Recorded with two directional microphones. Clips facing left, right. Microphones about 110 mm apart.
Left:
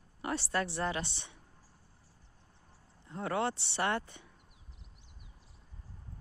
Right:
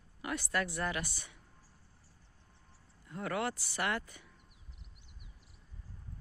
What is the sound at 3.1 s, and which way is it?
Speech, 25° left (ahead or behind).